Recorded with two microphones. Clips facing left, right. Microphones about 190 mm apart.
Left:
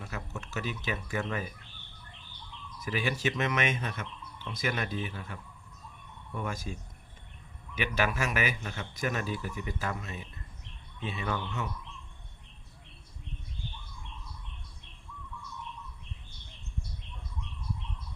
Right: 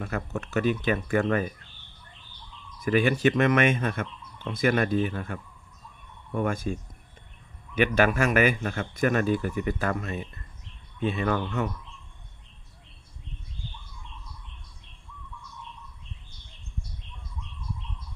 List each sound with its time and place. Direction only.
0.0 s speech: 60° right (ahead or behind)
2.8 s speech: 55° right (ahead or behind)
7.8 s speech: 55° right (ahead or behind)